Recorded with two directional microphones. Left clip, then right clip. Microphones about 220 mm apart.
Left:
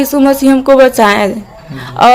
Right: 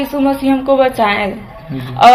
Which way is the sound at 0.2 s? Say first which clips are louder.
Left 5 dB; 60° left (ahead or behind).